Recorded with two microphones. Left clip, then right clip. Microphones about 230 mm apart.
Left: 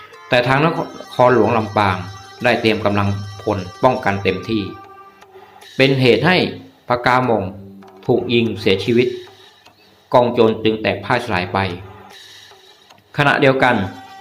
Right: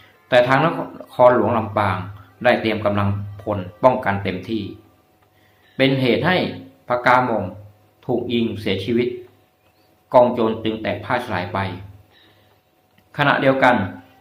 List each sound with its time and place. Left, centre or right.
0.3 s speech: centre
5.7 s speech: centre
10.1 s speech: centre
13.1 s speech: centre